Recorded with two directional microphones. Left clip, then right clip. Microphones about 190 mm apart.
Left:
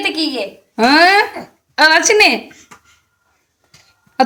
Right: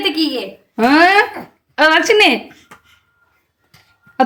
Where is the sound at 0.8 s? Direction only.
5° right (ahead or behind).